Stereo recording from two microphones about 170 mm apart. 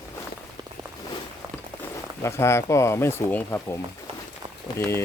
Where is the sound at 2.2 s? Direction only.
15° left (ahead or behind).